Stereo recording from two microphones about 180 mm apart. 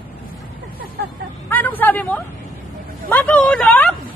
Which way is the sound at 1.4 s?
10° left (ahead or behind).